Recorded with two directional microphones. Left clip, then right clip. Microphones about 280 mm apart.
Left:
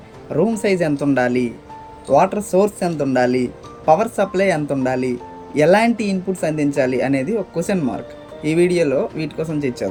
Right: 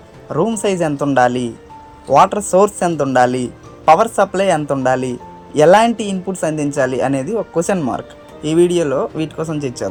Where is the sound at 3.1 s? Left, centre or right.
Right.